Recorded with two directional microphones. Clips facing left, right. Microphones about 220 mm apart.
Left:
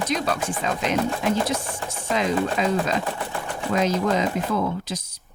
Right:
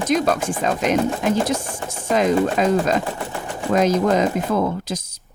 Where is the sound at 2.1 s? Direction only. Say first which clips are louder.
Right 5 dB; 45° right (ahead or behind).